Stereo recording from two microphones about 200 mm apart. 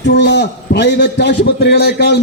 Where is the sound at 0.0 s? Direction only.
60° left (ahead or behind).